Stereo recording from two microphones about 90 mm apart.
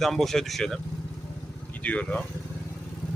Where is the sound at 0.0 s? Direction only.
5° left (ahead or behind).